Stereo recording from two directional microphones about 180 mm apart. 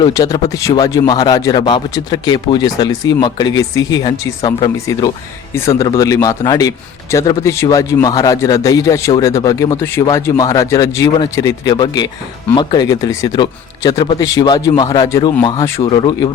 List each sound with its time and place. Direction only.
0.0 s a man's voice: 20° left (ahead or behind)